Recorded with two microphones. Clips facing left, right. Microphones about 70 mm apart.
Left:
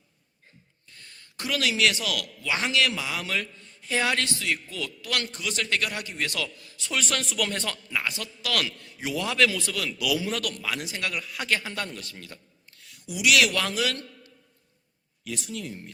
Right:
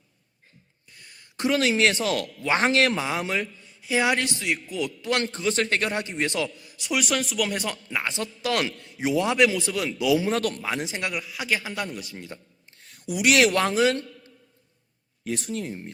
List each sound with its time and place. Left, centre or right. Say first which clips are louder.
0.9 s speech: even; centre
3.6 s a man's voice: right 4 dB; centre
11.1 s a man's voice: right 1 dB; centre
12.8 s a sound: right 3 dB; right
13.3 s a man's voice: right 4 dB; right